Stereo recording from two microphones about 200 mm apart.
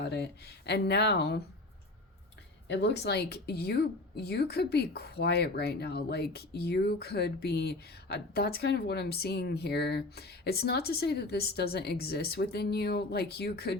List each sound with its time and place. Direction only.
0.0 s speech: 55° left (ahead or behind)
2.6 s speech: 60° left (ahead or behind)